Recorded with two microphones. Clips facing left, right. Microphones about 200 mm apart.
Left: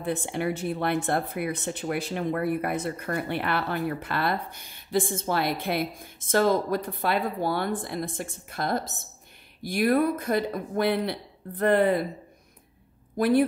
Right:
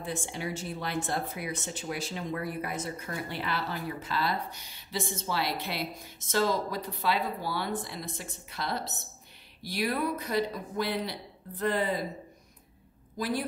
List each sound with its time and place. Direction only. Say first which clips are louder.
0.0 s speech: left 7 dB; 60° left (ahead or behind)
13.2 s speech: left 10 dB; 60° left (ahead or behind)